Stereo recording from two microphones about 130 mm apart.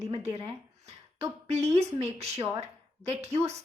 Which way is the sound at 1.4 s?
55° right (ahead or behind).